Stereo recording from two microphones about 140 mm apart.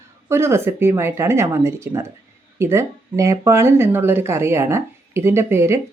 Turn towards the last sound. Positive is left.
turn(degrees=-20)  # may be behind; listen again after turning